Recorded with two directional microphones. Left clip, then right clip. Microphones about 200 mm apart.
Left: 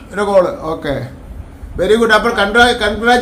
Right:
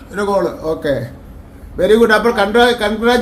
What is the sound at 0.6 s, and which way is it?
Speech, 10° right (ahead or behind).